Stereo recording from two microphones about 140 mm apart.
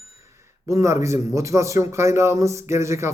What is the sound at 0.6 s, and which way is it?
Speech, 20° right (ahead or behind).